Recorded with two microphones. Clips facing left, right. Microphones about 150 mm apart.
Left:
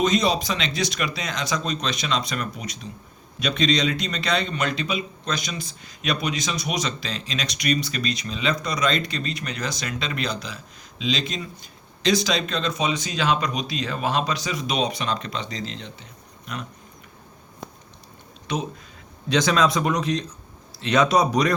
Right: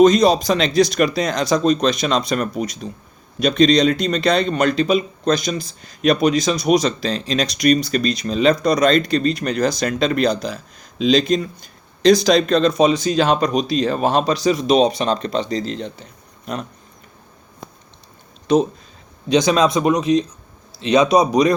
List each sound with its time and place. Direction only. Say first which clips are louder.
0.0 s speech: right 9 dB; 40° right (ahead or behind)
18.5 s speech: right 13 dB; 35° right (ahead or behind)
19.3 s speech: right 5 dB; 15° right (ahead or behind)